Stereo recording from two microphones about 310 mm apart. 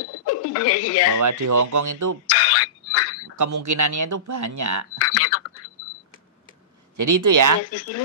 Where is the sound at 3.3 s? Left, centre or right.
Right.